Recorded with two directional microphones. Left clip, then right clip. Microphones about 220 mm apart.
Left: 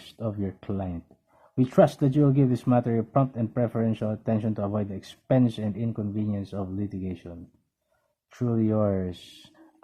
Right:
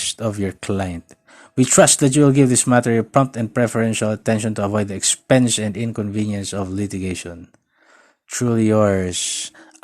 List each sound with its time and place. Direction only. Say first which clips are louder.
0.1 s speech: right 10 dB; 25° right (ahead or behind)